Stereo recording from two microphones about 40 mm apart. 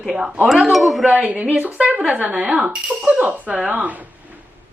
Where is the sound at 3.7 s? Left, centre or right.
Right.